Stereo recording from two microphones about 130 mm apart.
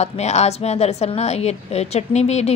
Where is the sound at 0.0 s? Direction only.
60° left (ahead or behind).